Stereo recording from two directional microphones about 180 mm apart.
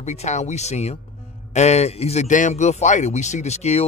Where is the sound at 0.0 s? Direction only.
40° left (ahead or behind).